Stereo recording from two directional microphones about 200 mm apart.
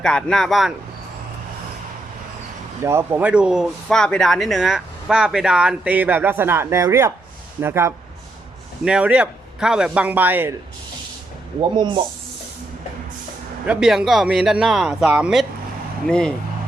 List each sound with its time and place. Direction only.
0.0 s speech: 5° left (ahead or behind)
2.8 s a man's voice: 10° right (ahead or behind)
11.8 s speech: 25° right (ahead or behind)
13.7 s speech: 5° right (ahead or behind)